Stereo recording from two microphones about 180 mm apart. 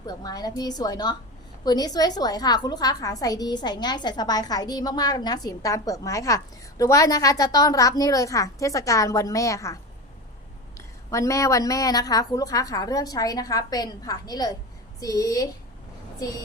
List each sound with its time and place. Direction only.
0.0 s a woman's voice: 20° left (ahead or behind)
10.8 s a woman's voice: 15° left (ahead or behind)